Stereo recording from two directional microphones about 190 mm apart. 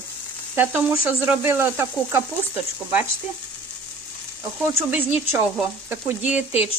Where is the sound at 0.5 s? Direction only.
10° right (ahead or behind).